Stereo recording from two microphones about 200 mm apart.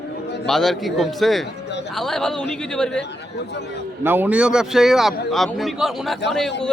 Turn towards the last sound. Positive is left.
turn(degrees=0)  # may be behind; listen again after turning